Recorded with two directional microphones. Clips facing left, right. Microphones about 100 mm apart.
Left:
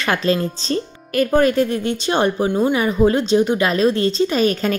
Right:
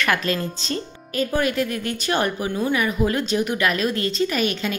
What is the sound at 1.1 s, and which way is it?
Speech, 55° left (ahead or behind).